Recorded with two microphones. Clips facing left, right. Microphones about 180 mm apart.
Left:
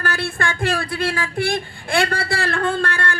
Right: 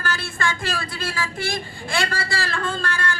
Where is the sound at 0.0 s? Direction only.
60° left (ahead or behind).